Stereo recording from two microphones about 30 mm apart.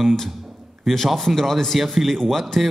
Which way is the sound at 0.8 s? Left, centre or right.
Centre.